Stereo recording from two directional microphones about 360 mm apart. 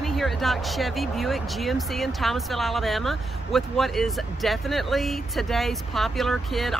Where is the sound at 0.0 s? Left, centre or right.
Centre.